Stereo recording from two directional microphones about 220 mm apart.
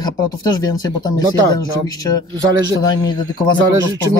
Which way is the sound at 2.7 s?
20° left (ahead or behind).